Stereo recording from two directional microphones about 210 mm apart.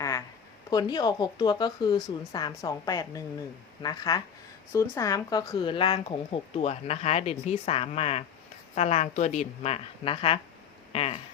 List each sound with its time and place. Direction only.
0.7 s a woman's voice: 20° left (ahead or behind)